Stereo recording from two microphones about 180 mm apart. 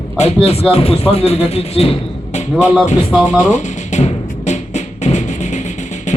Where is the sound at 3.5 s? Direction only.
40° left (ahead or behind).